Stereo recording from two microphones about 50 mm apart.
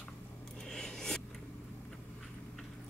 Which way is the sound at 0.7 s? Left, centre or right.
Centre.